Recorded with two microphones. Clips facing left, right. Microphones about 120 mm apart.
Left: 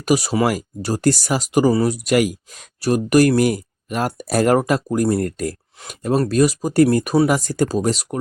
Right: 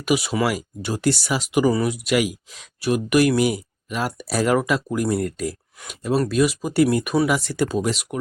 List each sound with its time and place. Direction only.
0.0 s speech: 40° left (ahead or behind)